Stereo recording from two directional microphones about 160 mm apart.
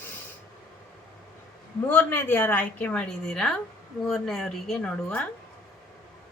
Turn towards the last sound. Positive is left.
turn(degrees=5)  # may be behind; listen again after turning